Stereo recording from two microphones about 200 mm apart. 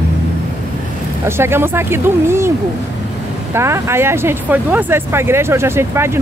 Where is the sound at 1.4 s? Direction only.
10° right (ahead or behind).